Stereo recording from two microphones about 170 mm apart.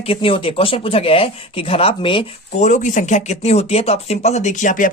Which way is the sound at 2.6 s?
45° left (ahead or behind).